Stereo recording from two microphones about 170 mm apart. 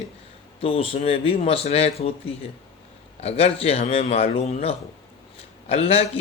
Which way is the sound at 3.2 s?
35° left (ahead or behind).